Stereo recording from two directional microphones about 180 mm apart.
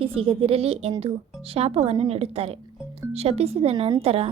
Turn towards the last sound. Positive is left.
turn(degrees=-35)  # may be behind; listen again after turning